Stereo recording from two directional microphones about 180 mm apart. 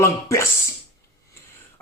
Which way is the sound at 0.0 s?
15° left (ahead or behind).